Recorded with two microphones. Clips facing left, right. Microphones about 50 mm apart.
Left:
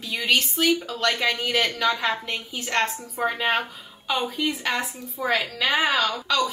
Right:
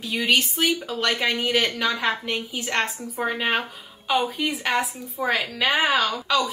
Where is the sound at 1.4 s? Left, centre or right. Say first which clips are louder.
Even; centre.